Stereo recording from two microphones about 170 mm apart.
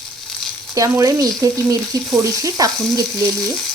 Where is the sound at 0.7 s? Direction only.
20° right (ahead or behind).